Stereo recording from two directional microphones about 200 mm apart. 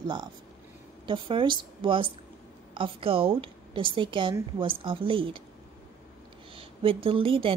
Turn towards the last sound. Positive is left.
turn(degrees=-25)  # may be behind; listen again after turning